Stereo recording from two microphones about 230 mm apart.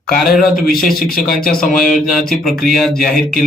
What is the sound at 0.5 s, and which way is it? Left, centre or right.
Speech, left.